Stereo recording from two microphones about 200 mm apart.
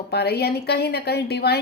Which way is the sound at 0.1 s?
55° left (ahead or behind).